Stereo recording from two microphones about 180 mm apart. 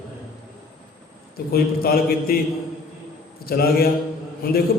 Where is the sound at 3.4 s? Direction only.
60° left (ahead or behind).